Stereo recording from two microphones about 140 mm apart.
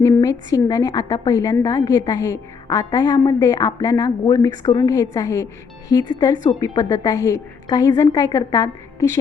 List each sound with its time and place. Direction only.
0.0 s a woman's voice: 25° left (ahead or behind)
5.1 s a woman's voice: 20° left (ahead or behind)